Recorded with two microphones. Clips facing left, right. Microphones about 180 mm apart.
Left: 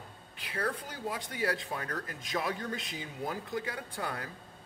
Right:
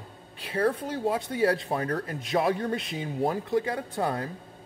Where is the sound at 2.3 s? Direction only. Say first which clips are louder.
Right 9 dB; 65° right (ahead or behind).